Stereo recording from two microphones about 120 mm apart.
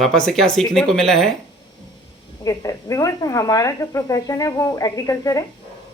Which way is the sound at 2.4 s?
30° left (ahead or behind).